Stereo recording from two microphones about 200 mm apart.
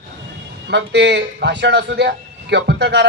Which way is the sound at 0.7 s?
60° right (ahead or behind).